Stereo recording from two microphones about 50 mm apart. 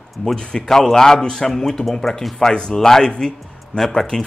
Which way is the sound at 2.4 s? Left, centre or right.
Centre.